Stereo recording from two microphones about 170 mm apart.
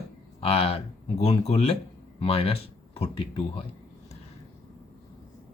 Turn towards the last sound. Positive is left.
turn(degrees=35)  # may be behind; listen again after turning